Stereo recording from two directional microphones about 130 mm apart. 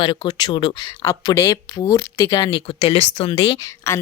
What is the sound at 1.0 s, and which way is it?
A woman's voice, 30° left (ahead or behind).